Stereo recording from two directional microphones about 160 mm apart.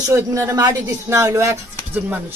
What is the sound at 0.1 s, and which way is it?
A man's voice, 20° right (ahead or behind).